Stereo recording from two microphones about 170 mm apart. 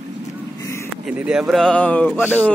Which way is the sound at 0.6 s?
15° left (ahead or behind).